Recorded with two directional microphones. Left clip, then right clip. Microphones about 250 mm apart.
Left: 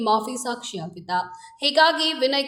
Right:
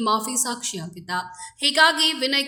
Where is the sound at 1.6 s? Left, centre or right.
Right.